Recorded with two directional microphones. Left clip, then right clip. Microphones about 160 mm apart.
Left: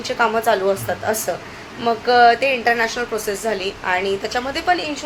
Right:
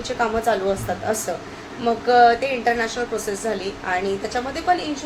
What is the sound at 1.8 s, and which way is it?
A woman's voice, 15° left (ahead or behind).